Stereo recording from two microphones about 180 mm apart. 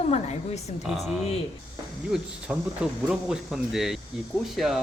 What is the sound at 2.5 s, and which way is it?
Speech, 5° right (ahead or behind).